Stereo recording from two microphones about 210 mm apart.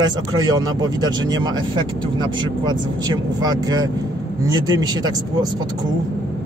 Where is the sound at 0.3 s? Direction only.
20° right (ahead or behind).